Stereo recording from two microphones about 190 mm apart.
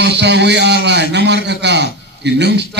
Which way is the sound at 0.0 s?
65° right (ahead or behind).